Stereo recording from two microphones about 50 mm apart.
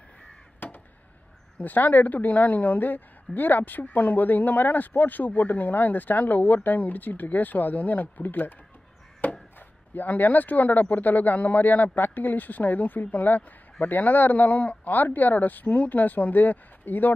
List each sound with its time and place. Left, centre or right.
0.6 s crow: left
1.6 s speech: left
9.2 s chop: left
9.9 s speech: left